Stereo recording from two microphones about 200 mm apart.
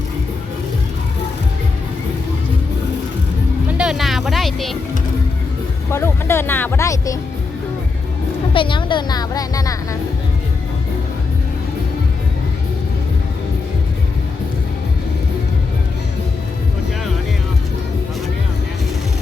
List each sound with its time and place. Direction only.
3.7 s music: 5° right (ahead or behind)
5.9 s speech: 10° left (ahead or behind)
8.5 s speech: 25° left (ahead or behind)